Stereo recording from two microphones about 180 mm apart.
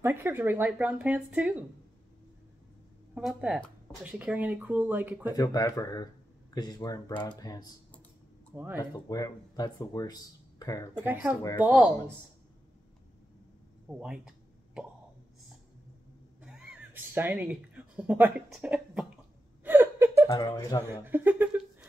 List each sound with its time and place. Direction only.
0.0 s speech: 10° right (ahead or behind)
3.2 s speech: 5° right (ahead or behind)
5.3 s speech: 20° left (ahead or behind)
8.5 s speech: 10° right (ahead or behind)
8.9 s speech: 20° left (ahead or behind)
11.0 s speech: 10° right (ahead or behind)
13.8 s a sound: 5° right (ahead or behind)
16.3 s speech: 5° right (ahead or behind)
19.6 s a sound: 10° right (ahead or behind)
20.2 s speech: 20° left (ahead or behind)
20.9 s speech: 10° right (ahead or behind)